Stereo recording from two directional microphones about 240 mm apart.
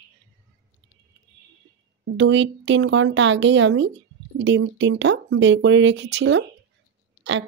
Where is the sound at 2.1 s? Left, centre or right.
Right.